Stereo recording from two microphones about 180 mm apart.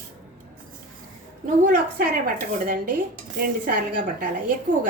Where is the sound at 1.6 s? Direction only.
50° right (ahead or behind).